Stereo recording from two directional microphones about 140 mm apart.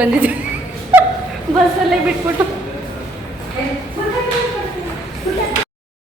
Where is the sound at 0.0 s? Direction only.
10° right (ahead or behind).